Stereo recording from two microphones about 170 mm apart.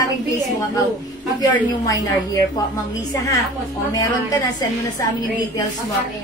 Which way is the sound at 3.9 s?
20° left (ahead or behind).